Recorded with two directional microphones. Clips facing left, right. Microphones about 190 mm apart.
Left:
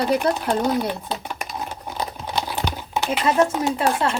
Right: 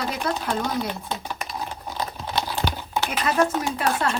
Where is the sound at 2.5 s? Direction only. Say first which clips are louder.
Left 1 dB; 20° left (ahead or behind).